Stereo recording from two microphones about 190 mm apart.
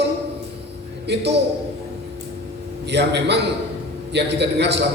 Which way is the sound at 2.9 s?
60° right (ahead or behind).